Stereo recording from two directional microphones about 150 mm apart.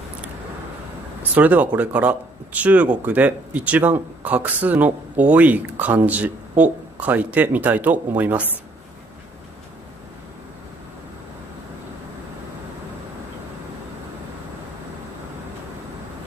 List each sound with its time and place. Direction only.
1.3 s speech: 10° right (ahead or behind)